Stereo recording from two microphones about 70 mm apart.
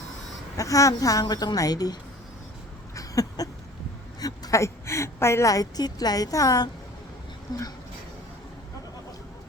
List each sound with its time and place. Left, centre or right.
0.5 s a woman's voice: left
2.9 s a sound: left
4.5 s a woman's voice: left
5.5 s a woman's voice: left
7.5 s speech: left